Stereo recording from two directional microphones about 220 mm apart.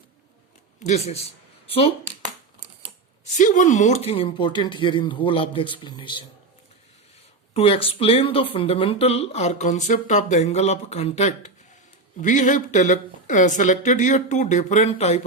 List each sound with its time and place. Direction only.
0.8 s speech: 30° left (ahead or behind)
3.3 s speech: 35° left (ahead or behind)
7.5 s speech: 25° left (ahead or behind)